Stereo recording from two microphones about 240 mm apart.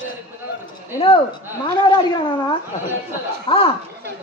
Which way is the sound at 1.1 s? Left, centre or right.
Left.